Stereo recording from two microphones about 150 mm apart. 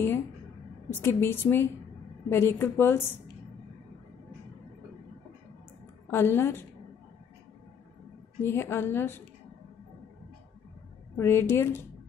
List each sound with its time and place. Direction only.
0.8 s a woman's voice: 15° left (ahead or behind)
6.0 s a woman's voice: 15° left (ahead or behind)
8.4 s a woman's voice: 15° left (ahead or behind)
11.1 s a woman's voice: 15° left (ahead or behind)